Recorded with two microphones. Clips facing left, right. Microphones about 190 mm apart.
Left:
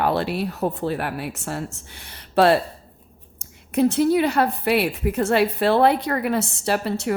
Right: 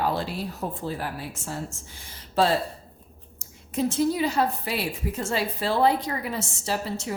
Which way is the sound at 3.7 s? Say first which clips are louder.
Left 6 dB; 65° left (ahead or behind).